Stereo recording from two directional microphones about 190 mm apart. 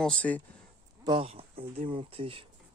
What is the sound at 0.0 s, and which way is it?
Speech, 5° left (ahead or behind).